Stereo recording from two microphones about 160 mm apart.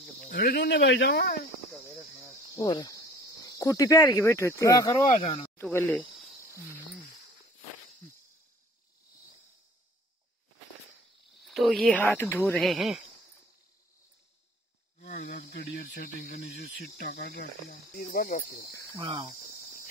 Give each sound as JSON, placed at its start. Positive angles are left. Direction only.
{"t": 0.3, "sound": "speech", "side_deg": 70}
{"t": 2.5, "sound": "cricket", "side_deg": 25}
{"t": 3.4, "sound": "speech", "side_deg": 20}
{"t": 11.4, "sound": "speech", "side_deg": 0}
{"t": 12.5, "sound": "speech", "side_deg": 0}
{"t": 15.1, "sound": "speech", "side_deg": 80}
{"t": 17.0, "sound": "speech", "side_deg": 80}
{"t": 17.9, "sound": "speech", "side_deg": 60}
{"t": 18.9, "sound": "speech", "side_deg": -30}